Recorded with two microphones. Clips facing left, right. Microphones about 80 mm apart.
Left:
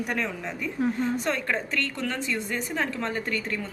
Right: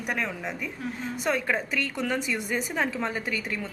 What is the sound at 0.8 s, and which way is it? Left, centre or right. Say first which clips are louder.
Speech: left 12 dB; left.